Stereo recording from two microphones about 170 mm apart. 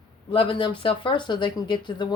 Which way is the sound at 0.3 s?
30° left (ahead or behind).